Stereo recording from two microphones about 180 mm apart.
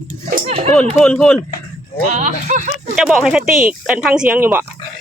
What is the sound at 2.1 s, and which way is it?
Speech, 40° right (ahead or behind).